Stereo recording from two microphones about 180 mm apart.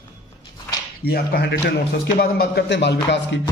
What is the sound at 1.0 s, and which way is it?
A man's voice, 60° left (ahead or behind).